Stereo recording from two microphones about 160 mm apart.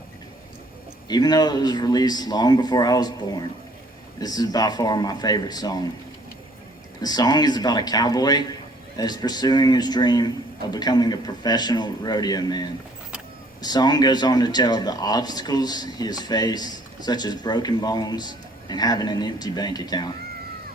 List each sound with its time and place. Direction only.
1.0 s speech: 25° left (ahead or behind)
7.0 s speech: 25° left (ahead or behind)